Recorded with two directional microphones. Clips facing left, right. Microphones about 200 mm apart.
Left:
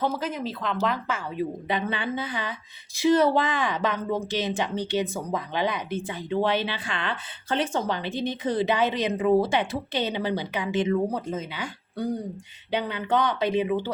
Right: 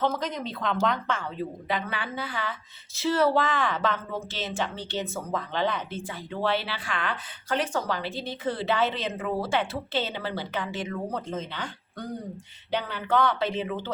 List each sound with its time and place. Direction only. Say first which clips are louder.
0.0 s a woman's voice: left 1 dB; 5° left (ahead or behind)
1.6 s speech: left 3 dB; 20° left (ahead or behind)